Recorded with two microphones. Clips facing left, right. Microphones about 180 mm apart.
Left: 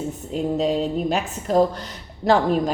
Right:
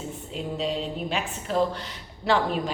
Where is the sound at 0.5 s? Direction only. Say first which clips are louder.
Left 7 dB; 45° left (ahead or behind).